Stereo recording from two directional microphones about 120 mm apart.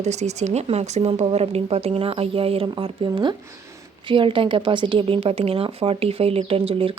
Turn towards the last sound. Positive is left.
turn(degrees=-50)  # may be behind; listen again after turning